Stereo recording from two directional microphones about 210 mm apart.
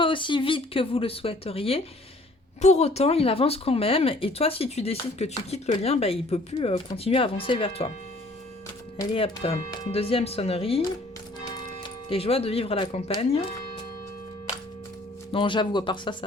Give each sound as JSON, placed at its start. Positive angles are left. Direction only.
{"t": 0.0, "sound": "speech", "side_deg": 25}
{"t": 9.0, "sound": "speech", "side_deg": 25}
{"t": 15.3, "sound": "speech", "side_deg": 25}